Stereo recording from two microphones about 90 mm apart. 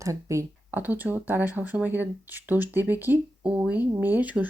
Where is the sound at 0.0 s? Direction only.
35° right (ahead or behind).